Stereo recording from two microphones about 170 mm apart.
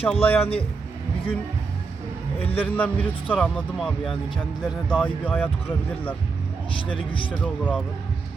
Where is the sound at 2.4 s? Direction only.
35° left (ahead or behind).